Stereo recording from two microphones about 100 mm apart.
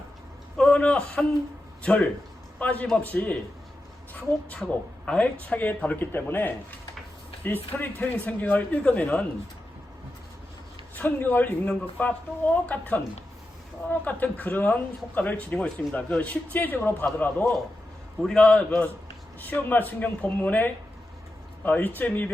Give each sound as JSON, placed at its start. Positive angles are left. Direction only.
{"t": 0.5, "sound": "a man's voice", "side_deg": 10}
{"t": 10.9, "sound": "speech", "side_deg": 20}
{"t": 18.2, "sound": "speech", "side_deg": 5}